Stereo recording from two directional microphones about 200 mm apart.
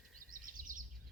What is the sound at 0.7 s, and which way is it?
Bird, 40° right (ahead or behind).